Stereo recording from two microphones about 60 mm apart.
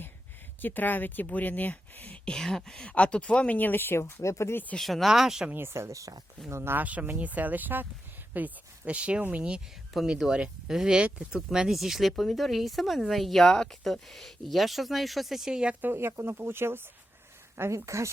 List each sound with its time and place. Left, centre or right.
0.6 s speech: left
2.2 s speech: centre; by 4.1 s left
4.2 s speech: left
4.8 s speech: centre
5.5 s speech: right
5.7 s speech: right
6.5 s speech: right
6.7 s speech: right
9.9 s speech: centre
15.8 s speech: right
17.6 s speech: right